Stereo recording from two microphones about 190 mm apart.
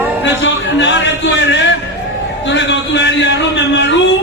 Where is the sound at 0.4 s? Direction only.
75° left (ahead or behind).